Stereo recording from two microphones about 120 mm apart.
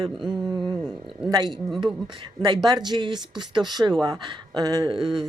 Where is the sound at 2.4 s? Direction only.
35° right (ahead or behind).